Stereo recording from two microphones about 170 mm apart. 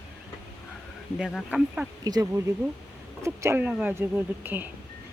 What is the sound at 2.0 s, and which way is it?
Speech, 20° right (ahead or behind).